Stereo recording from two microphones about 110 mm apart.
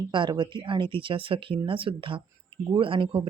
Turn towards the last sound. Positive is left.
turn(degrees=-55)  # may be behind; listen again after turning